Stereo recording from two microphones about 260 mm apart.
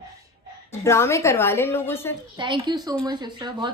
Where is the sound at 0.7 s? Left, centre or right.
Centre.